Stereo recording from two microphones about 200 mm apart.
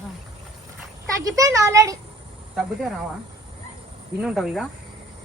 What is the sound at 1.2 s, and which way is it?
Speech, 15° right (ahead or behind).